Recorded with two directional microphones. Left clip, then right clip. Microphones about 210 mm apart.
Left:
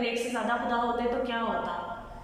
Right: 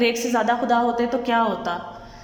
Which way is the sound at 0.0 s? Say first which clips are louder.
Right 9 dB; 35° right (ahead or behind).